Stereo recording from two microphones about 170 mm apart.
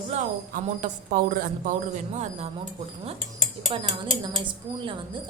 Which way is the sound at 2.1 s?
40° right (ahead or behind).